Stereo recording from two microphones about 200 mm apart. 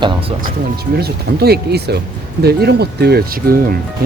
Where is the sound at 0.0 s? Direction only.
25° right (ahead or behind).